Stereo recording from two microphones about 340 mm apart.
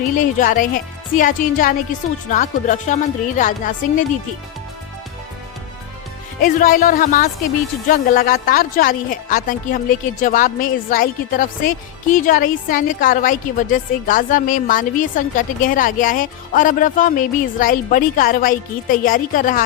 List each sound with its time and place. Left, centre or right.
0.2 s a woman's voice: left
6.4 s a woman's voice: left